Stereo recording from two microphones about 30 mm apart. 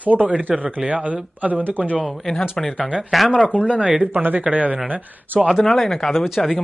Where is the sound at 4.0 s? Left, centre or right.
Right.